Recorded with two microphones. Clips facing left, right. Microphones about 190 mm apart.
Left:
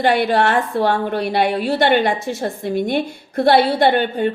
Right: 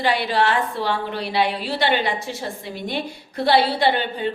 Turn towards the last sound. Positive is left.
turn(degrees=50)  # may be behind; listen again after turning